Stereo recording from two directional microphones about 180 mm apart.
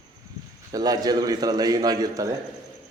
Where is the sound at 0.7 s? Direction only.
20° right (ahead or behind).